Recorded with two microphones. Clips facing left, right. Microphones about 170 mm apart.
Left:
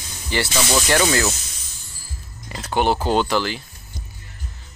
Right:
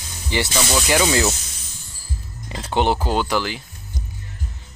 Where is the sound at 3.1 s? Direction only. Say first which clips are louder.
Left 2 dB; 10° right (ahead or behind).